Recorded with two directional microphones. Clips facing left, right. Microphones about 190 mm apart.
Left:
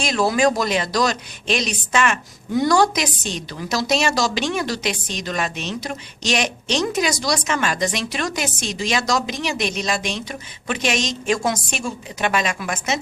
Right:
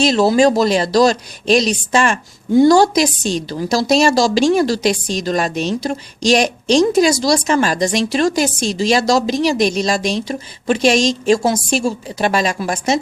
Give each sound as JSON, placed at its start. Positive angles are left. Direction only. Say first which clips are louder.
{"t": 0.0, "sound": "speech", "louder": "right 6 dB", "side_deg": -30}